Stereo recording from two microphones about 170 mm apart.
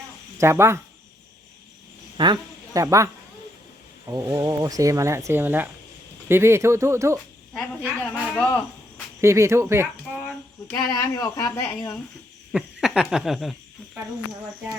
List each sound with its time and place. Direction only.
0.3 s speech: 15° right (ahead or behind)
2.1 s speech: 25° right (ahead or behind)
8.1 s speech: 10° left (ahead or behind)
9.2 s speech: 15° right (ahead or behind)
10.9 s speech: 20° left (ahead or behind)
11.4 s speech: 5° left (ahead or behind)